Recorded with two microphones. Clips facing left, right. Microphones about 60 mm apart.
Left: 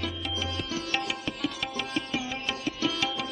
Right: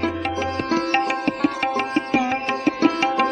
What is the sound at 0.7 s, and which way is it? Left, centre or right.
Music, right.